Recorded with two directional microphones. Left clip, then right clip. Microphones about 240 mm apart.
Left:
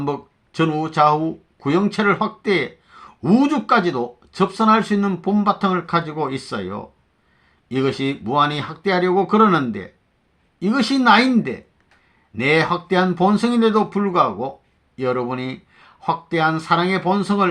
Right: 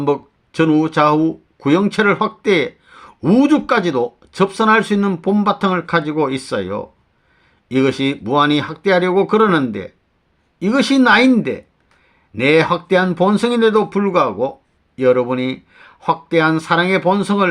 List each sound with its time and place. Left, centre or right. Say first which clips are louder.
0.0 s speech: right 7 dB; right